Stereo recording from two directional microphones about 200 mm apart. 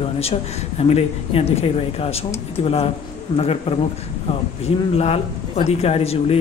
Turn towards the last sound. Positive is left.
turn(degrees=30)  # may be behind; listen again after turning